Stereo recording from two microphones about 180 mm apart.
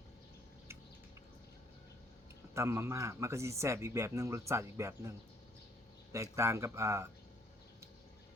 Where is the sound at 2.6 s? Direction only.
15° right (ahead or behind).